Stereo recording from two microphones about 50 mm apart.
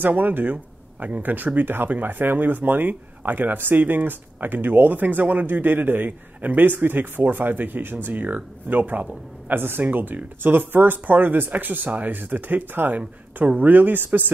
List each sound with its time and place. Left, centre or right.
0.0 s speech: right